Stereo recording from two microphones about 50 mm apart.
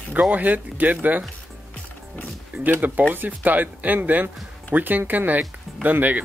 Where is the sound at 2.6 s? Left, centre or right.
Right.